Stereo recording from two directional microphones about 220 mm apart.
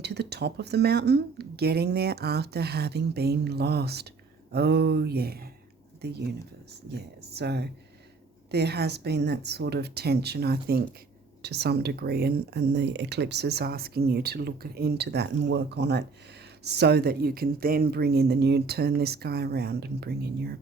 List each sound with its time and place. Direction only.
0.0 s speech: 50° right (ahead or behind)